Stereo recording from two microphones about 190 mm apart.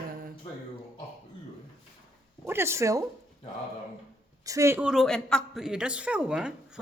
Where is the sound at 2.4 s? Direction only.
15° right (ahead or behind).